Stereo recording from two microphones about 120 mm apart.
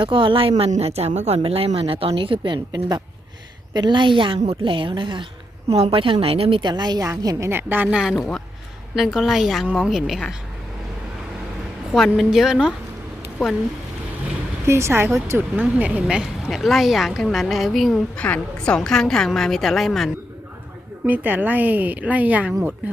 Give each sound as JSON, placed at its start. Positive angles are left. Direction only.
{"t": 0.0, "sound": "speech", "side_deg": -45}
{"t": 0.7, "sound": "speech", "side_deg": -60}
{"t": 1.5, "sound": "speech", "side_deg": -55}
{"t": 5.6, "sound": "a woman's voice", "side_deg": -50}
{"t": 11.9, "sound": "speech", "side_deg": 0}
{"t": 14.7, "sound": "speech", "side_deg": -20}
{"t": 21.0, "sound": "a woman's voice", "side_deg": -15}